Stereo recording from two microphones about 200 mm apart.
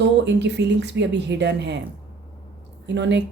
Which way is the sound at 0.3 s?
60° right (ahead or behind).